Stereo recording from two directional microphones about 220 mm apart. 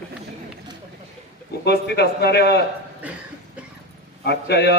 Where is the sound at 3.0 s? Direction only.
5° right (ahead or behind).